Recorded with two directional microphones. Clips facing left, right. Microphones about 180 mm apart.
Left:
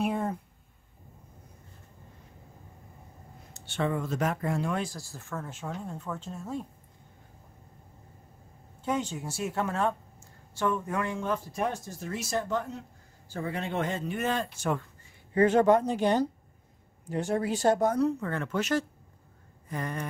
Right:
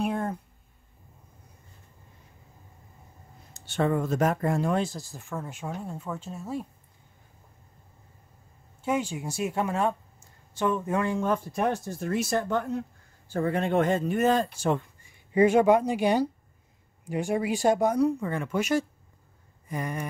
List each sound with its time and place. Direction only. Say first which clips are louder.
0.0 s a sound: right 1 dB; centre (ahead or behind)
3.5 s speech: right 4 dB; 40° right (ahead or behind)
4.7 s speech: right 5 dB; 25° right (ahead or behind)
8.8 s speech: right 3 dB; 10° right (ahead or behind); by 11.1 s 25° right (ahead or behind)
11.5 s speech: right 4 dB; 60° right (ahead or behind); by 14.7 s 40° right (ahead or behind)
15.3 s speech: right 2 dB; 10° right (ahead or behind)